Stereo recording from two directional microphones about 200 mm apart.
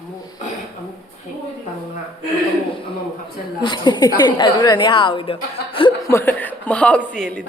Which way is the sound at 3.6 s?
20° left (ahead or behind).